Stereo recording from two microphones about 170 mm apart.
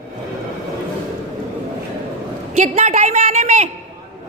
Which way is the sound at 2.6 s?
45° right (ahead or behind).